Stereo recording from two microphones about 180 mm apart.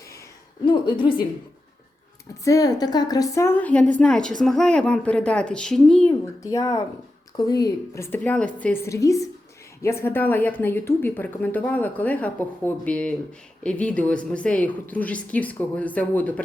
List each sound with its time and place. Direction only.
0.6 s a woman's voice: 25° left (ahead or behind)
2.4 s a woman's voice: 20° left (ahead or behind)
6.4 s a woman's voice: 20° left (ahead or behind)